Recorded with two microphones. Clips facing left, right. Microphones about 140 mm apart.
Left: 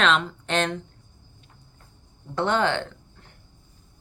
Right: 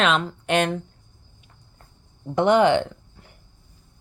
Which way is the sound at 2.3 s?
15° right (ahead or behind).